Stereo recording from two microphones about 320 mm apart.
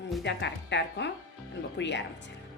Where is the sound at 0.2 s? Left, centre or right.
Left.